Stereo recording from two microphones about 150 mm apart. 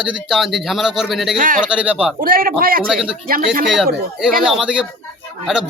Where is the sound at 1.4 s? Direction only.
65° right (ahead or behind).